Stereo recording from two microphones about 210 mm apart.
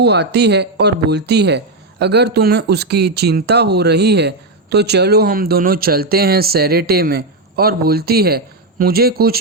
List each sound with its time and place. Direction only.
0.0 s speech: 50° right (ahead or behind)